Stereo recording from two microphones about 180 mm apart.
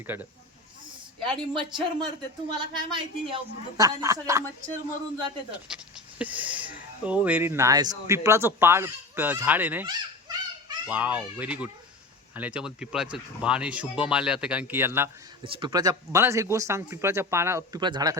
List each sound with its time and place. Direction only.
0.1 s speech: 10° right (ahead or behind)
1.2 s speech: 25° right (ahead or behind)
5.6 s speech: 5° right (ahead or behind)
9.8 s children playing: 20° right (ahead or behind)
10.8 s speech: 10° right (ahead or behind)
15.4 s speech: 25° right (ahead or behind)